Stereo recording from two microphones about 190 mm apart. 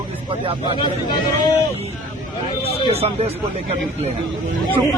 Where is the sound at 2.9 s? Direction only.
30° right (ahead or behind).